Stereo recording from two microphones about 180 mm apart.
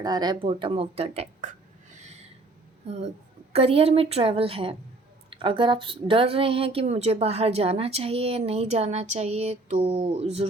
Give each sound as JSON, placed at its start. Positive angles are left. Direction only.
{"t": 0.0, "sound": "speech", "side_deg": -25}
{"t": 3.5, "sound": "speech", "side_deg": -35}